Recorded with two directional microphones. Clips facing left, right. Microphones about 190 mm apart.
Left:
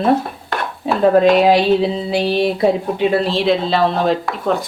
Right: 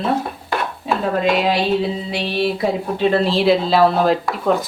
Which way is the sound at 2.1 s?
40° left (ahead or behind).